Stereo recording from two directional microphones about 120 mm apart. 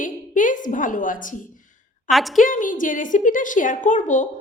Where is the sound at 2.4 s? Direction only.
90° left.